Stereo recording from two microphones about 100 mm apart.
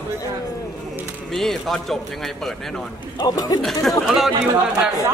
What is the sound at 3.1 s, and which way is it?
Speech, 40° left (ahead or behind).